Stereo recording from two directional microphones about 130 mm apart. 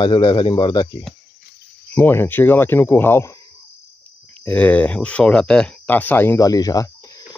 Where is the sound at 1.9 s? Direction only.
15° left (ahead or behind).